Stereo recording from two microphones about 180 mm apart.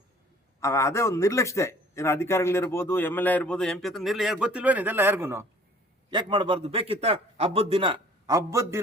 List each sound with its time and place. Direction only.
0.6 s a man's voice: 15° left (ahead or behind); by 5.5 s 15° right (ahead or behind)
6.1 s a man's voice: 25° right (ahead or behind)